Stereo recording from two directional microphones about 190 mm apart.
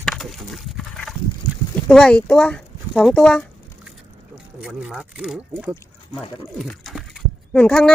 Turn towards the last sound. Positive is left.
turn(degrees=5)  # may be behind; listen again after turning